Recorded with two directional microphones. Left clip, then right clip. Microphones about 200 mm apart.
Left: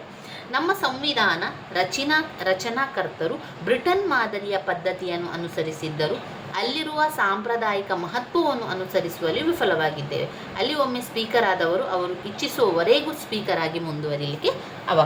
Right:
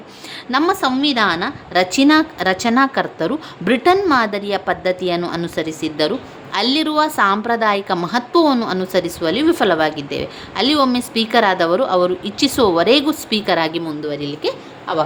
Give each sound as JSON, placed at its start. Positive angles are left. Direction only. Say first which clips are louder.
{"t": 0.5, "sound": "a woman's voice", "louder": "right 7 dB", "side_deg": -60}
{"t": 14.1, "sound": "speech", "louder": "right 1 dB", "side_deg": -35}